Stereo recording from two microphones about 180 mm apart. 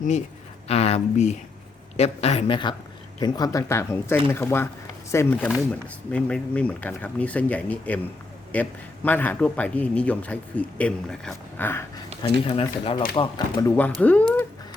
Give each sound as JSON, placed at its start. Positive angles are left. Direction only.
{"t": 0.7, "sound": "speech", "side_deg": 35}
{"t": 12.5, "sound": "speech", "side_deg": 30}
{"t": 13.1, "sound": "speech", "side_deg": 20}
{"t": 14.0, "sound": "speech", "side_deg": 10}